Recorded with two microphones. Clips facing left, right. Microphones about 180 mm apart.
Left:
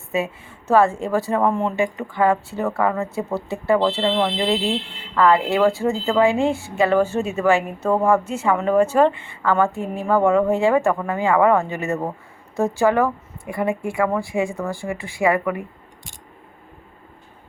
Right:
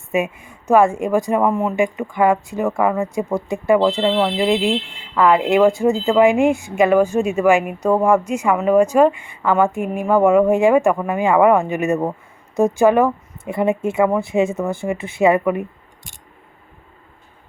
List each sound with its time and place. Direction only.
0.1 s a woman's voice: 15° right (ahead or behind)